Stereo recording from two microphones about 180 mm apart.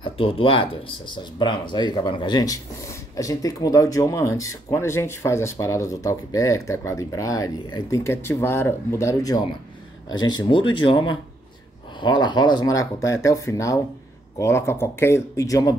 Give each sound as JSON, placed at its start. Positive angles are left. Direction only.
{"t": 0.0, "sound": "speech", "side_deg": 30}